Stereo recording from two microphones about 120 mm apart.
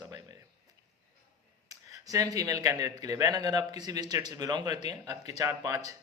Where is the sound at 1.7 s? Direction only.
30° right (ahead or behind).